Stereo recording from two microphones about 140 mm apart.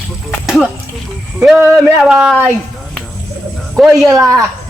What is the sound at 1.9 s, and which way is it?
Speech, centre (ahead or behind).